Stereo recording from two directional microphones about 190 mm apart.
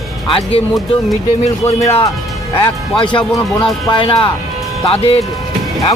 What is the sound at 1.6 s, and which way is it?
Speech, 10° left (ahead or behind).